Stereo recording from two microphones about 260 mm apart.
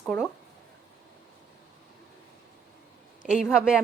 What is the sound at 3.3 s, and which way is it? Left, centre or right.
Speech, centre.